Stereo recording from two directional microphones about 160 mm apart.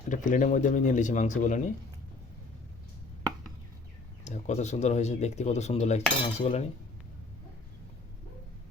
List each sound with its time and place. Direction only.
0.1 s speech: 55° left (ahead or behind)
4.2 s speech: 45° left (ahead or behind)